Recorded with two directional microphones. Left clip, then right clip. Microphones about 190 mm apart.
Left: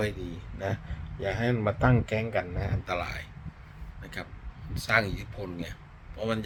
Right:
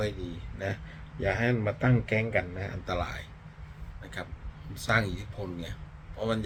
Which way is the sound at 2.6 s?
5° right (ahead or behind).